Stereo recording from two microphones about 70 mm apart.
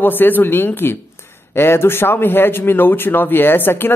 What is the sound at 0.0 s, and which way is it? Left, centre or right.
A woman's voice, left.